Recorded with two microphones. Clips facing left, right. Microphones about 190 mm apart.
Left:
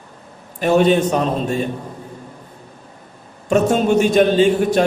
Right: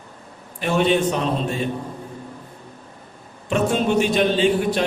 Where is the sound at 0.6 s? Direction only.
45° left (ahead or behind).